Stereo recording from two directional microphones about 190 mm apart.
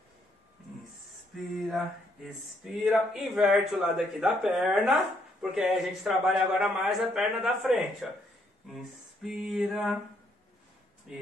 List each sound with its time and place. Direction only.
1.3 s a man's voice: centre (ahead or behind)
11.1 s a man's voice: 5° right (ahead or behind)